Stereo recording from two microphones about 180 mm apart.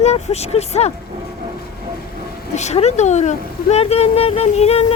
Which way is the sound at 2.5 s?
40° left (ahead or behind).